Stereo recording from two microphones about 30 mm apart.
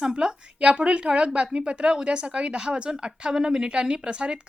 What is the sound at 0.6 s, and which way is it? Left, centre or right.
Speech, right.